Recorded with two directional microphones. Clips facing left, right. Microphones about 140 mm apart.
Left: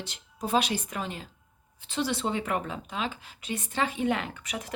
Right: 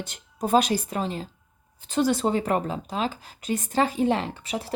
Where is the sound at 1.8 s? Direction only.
45° right (ahead or behind).